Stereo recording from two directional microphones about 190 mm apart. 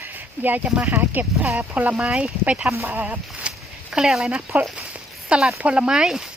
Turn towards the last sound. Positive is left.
turn(degrees=0)  # may be behind; listen again after turning